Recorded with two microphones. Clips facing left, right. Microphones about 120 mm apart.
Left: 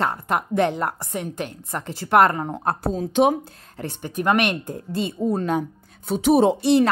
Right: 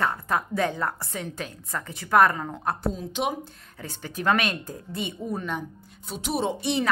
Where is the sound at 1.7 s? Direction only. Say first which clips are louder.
Left 3 dB; 25° left (ahead or behind).